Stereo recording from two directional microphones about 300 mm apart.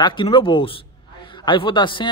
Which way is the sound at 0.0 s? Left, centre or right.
Centre.